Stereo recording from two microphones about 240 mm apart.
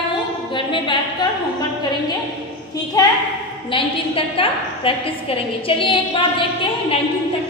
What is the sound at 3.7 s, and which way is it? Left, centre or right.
A woman's voice, left.